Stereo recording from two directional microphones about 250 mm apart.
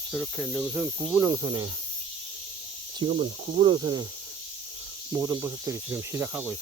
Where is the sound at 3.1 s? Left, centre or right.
Right.